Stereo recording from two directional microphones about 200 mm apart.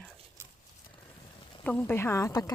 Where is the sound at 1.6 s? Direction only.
10° left (ahead or behind).